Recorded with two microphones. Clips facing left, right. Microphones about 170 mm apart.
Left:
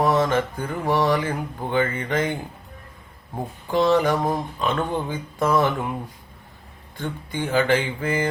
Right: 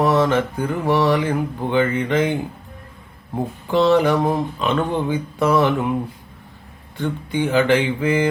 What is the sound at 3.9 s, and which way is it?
Speech, 10° right (ahead or behind).